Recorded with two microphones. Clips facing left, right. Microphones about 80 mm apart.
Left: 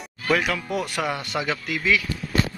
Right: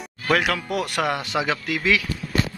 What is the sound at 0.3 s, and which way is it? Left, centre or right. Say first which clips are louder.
Speech: right 1 dB; right.